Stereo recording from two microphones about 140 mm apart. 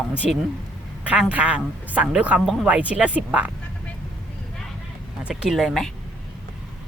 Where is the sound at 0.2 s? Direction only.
5° right (ahead or behind).